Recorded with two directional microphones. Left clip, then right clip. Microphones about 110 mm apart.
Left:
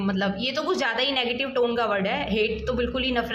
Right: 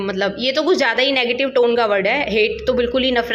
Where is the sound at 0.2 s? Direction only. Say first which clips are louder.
Right 9 dB; 20° right (ahead or behind).